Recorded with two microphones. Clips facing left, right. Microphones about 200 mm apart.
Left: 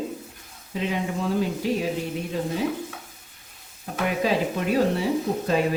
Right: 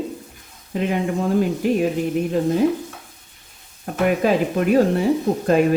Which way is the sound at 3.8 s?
55° right (ahead or behind).